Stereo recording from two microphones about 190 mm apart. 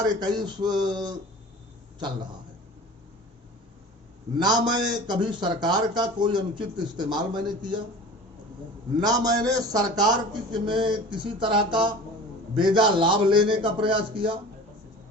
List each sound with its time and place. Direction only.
0.0 s speech: 20° right (ahead or behind)
4.4 s speech: 20° right (ahead or behind)
9.0 s speech: 20° right (ahead or behind)